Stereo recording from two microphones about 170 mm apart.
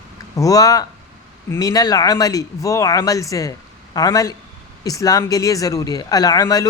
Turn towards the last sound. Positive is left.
turn(degrees=20)  # may be behind; listen again after turning